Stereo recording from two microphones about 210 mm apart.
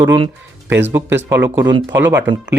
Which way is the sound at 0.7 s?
10° right (ahead or behind).